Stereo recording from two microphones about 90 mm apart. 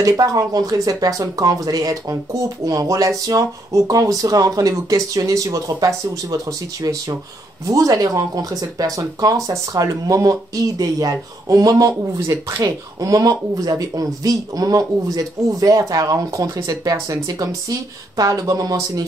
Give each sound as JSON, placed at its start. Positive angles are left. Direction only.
{"t": 0.0, "sound": "speech", "side_deg": -40}
{"t": 12.2, "sound": "speech", "side_deg": -30}
{"t": 12.6, "sound": "speech", "side_deg": -45}